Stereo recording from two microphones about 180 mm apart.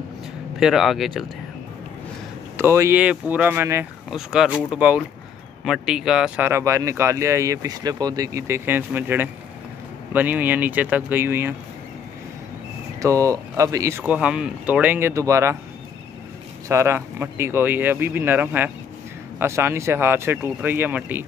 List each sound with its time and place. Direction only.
0.6 s speech: centre (ahead or behind)
2.5 s speech: 15° right (ahead or behind)
13.0 s speech: 20° right (ahead or behind)
16.6 s speech: 15° right (ahead or behind)